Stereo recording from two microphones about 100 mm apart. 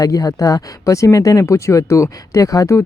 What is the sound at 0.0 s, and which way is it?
Speech, 35° left (ahead or behind).